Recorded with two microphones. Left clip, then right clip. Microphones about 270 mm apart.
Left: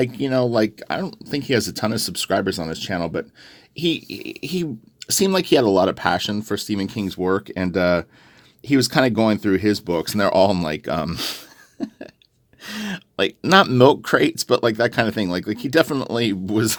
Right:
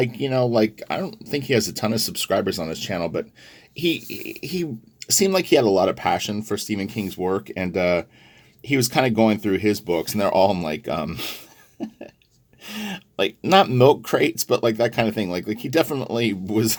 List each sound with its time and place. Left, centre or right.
0.2 s speech: left